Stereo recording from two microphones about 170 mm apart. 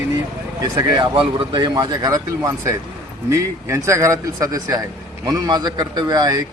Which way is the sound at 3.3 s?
15° right (ahead or behind).